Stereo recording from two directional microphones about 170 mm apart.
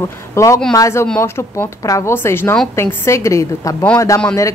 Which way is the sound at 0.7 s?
20° left (ahead or behind).